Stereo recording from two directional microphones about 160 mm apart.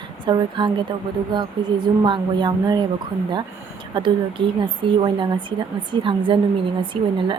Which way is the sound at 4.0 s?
30° right (ahead or behind).